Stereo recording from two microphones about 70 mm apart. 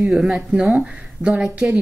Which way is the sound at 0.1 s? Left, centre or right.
Centre.